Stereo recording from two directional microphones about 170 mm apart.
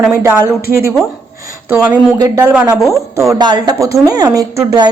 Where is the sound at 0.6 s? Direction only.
60° left (ahead or behind).